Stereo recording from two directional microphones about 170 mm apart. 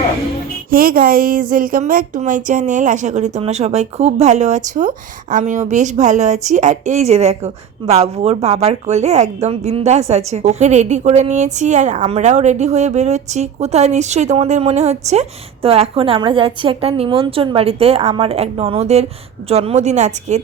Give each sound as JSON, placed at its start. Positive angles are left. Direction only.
{"t": 0.7, "sound": "a woman's voice", "side_deg": -60}